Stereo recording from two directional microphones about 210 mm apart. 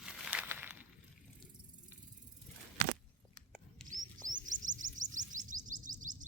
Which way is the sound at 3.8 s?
40° right (ahead or behind).